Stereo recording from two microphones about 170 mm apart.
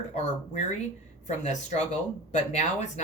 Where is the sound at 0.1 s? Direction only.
40° left (ahead or behind).